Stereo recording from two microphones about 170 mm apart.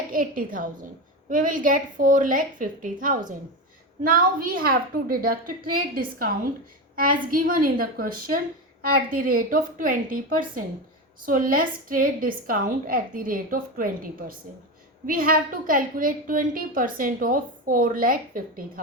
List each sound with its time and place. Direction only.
0.1 s a woman's voice: 55° right (ahead or behind)